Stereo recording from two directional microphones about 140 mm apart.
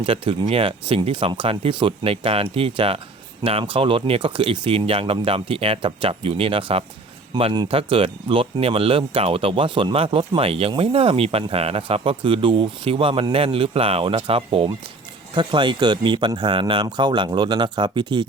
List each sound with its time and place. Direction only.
0.0 s speech: 40° right (ahead or behind)